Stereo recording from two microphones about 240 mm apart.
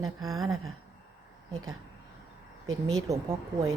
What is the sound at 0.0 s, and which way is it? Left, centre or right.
Speech, centre.